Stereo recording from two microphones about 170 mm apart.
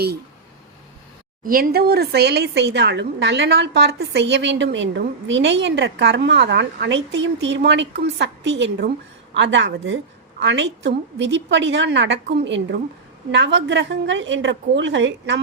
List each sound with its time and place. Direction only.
1.5 s speech: 60° right (ahead or behind); by 15.4 s 90° right